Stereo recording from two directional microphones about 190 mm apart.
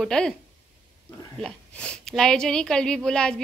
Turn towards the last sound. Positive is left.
turn(degrees=5)  # may be behind; listen again after turning